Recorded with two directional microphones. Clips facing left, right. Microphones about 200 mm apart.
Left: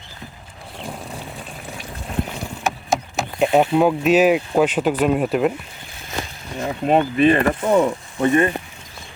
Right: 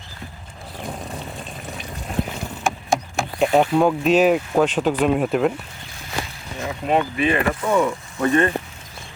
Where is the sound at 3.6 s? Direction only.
5° left (ahead or behind).